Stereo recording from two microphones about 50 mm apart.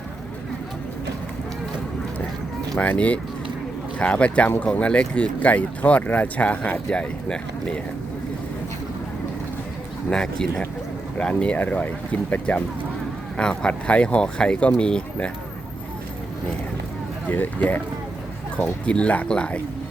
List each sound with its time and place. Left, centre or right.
2.7 s speech: left
10.1 s speech: centre
11.5 s speech: left
17.2 s speech: left
18.5 s speech: left